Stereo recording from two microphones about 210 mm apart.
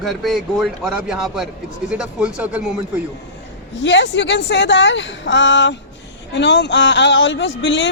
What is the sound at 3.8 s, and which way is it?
Speech, 60° left (ahead or behind).